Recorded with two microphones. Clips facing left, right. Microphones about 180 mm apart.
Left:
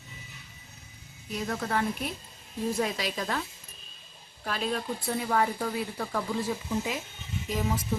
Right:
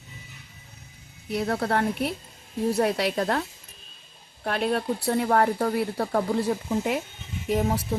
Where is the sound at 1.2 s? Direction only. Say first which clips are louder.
Right 6 dB; 65° right (ahead or behind).